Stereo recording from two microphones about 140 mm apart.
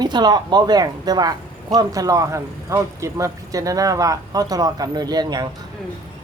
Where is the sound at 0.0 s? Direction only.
30° right (ahead or behind).